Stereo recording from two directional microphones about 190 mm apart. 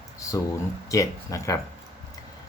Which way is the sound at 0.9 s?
15° left (ahead or behind).